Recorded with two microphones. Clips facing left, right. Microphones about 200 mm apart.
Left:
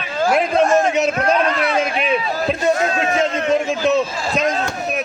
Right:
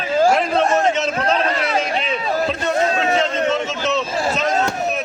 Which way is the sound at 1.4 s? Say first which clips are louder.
Left 2 dB; 30° right (ahead or behind).